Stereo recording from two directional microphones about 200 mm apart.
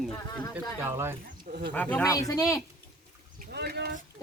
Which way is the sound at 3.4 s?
55° right (ahead or behind).